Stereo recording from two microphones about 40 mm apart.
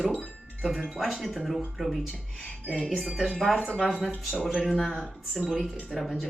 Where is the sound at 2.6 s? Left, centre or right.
Left.